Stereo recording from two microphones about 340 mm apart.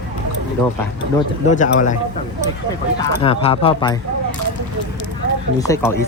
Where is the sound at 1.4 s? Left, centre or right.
Left.